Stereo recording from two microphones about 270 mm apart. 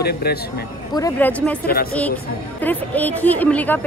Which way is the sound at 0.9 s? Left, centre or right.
Centre.